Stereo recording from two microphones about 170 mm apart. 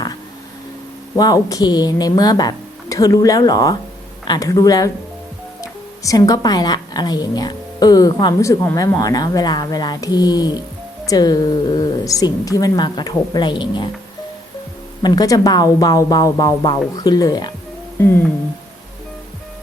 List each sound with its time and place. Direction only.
1.1 s speech: 20° left (ahead or behind)
15.0 s speech: 25° left (ahead or behind)